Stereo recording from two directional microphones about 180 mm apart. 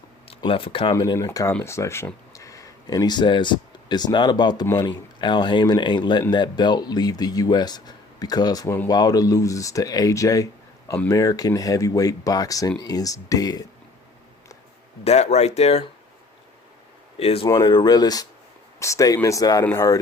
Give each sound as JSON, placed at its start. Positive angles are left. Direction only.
{"t": 0.3, "sound": "speech", "side_deg": 30}
{"t": 15.0, "sound": "speech", "side_deg": 40}
{"t": 17.2, "sound": "speech", "side_deg": 35}
{"t": 17.4, "sound": "speech", "side_deg": 20}